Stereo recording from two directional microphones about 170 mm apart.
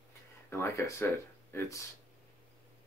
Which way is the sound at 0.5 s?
15° left (ahead or behind).